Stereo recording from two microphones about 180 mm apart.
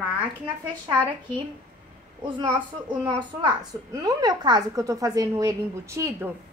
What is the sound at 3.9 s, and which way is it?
A woman's voice, 20° right (ahead or behind).